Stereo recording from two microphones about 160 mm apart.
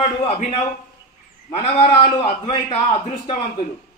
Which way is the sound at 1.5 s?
40° left (ahead or behind).